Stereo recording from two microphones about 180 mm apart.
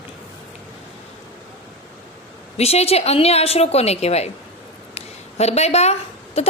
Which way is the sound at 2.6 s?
35° left (ahead or behind).